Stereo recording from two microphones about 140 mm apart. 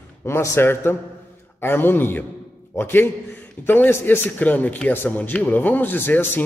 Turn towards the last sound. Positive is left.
turn(degrees=15)  # may be behind; listen again after turning